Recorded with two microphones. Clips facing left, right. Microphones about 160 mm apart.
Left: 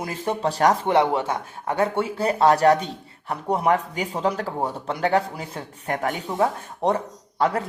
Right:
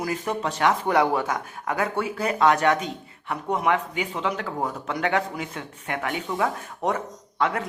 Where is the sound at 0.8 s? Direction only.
25° left (ahead or behind).